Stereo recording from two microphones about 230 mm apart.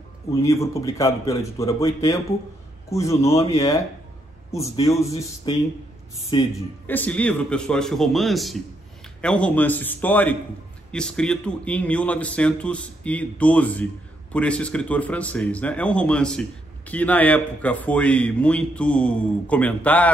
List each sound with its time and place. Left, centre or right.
0.3 s a man's voice: centre
6.9 s a man's voice: centre